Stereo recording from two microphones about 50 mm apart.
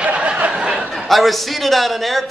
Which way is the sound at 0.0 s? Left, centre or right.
Right.